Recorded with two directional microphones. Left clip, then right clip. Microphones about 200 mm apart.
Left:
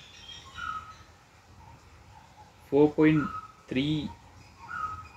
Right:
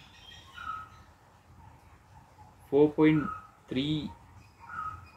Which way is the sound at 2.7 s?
20° left (ahead or behind).